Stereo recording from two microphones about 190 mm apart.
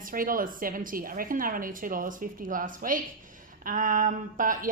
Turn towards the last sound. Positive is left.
turn(degrees=-45)  # may be behind; listen again after turning